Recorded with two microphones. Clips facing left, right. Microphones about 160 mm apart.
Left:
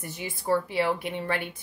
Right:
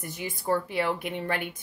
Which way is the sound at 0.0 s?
50° right (ahead or behind).